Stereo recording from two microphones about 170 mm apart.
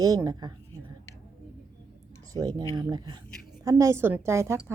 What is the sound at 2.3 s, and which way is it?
A woman's voice, 20° right (ahead or behind).